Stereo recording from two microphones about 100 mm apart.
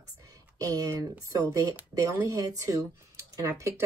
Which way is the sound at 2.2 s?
35° right (ahead or behind).